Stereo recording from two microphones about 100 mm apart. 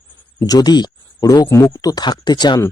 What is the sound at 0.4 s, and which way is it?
Speech, 40° left (ahead or behind).